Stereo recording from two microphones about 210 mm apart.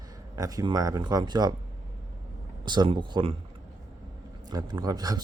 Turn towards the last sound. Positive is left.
turn(degrees=-20)  # may be behind; listen again after turning